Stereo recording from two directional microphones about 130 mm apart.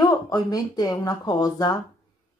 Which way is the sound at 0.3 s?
30° left (ahead or behind).